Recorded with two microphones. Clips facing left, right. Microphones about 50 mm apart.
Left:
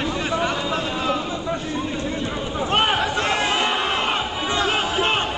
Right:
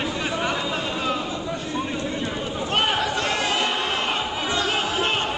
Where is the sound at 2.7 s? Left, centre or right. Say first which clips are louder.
Left 2 dB; left.